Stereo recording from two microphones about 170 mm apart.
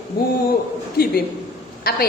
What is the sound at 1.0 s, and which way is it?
A woman's voice, 60° left (ahead or behind).